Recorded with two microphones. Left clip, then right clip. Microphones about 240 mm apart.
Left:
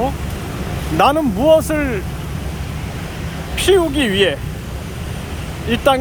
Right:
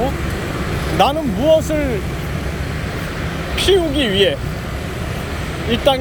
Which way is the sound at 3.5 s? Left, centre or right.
Centre.